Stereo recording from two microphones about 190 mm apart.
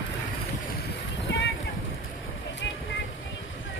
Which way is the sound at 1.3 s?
70° left (ahead or behind).